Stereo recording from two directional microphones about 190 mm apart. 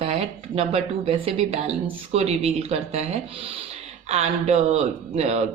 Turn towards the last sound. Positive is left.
turn(degrees=-35)  # may be behind; listen again after turning